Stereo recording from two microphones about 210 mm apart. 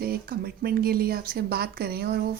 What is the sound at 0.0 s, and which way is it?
Speech, 45° right (ahead or behind).